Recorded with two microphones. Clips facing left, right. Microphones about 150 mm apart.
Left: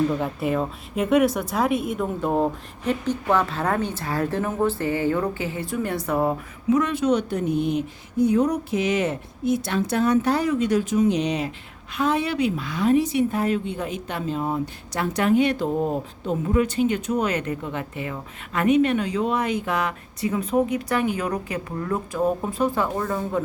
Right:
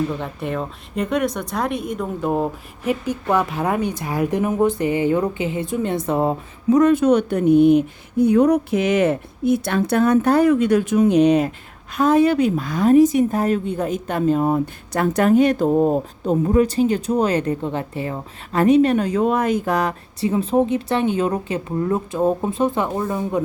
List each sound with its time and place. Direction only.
0.2 s a woman's voice: 5° left (ahead or behind); by 6.4 s 25° right (ahead or behind)
6.7 s a woman's voice: 40° right (ahead or behind); by 23.4 s 20° right (ahead or behind)